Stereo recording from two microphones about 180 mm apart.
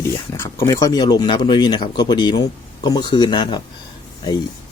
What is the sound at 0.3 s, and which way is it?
Speech, 15° left (ahead or behind).